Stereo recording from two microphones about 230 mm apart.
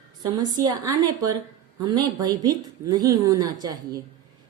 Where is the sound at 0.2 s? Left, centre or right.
Centre.